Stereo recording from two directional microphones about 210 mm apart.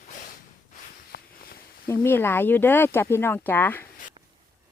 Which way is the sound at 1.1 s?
50° left (ahead or behind).